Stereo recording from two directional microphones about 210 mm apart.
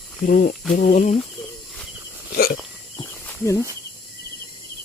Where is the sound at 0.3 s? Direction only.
40° left (ahead or behind).